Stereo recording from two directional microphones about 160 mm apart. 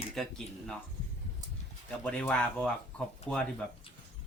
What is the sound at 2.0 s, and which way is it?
Speech, 5° left (ahead or behind).